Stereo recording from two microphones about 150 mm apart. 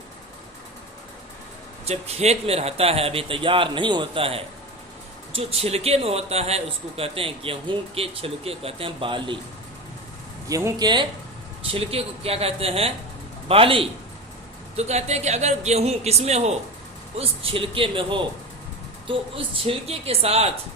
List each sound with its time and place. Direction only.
1.8 s a man's voice: 45° right (ahead or behind)
10.5 s speech: 25° right (ahead or behind)
11.6 s a man's voice: 40° right (ahead or behind)